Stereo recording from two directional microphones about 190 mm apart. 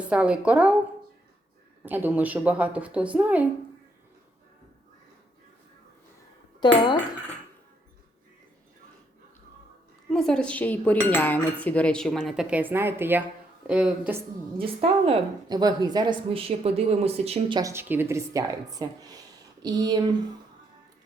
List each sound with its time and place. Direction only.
0.0 s speech: 5° right (ahead or behind)
1.8 s speech: 10° right (ahead or behind)
6.6 s speech: 20° left (ahead or behind)
10.1 s cutlery: 5° left (ahead or behind)
14.6 s a woman's voice: 30° right (ahead or behind)
17.6 s a woman's voice: 15° right (ahead or behind)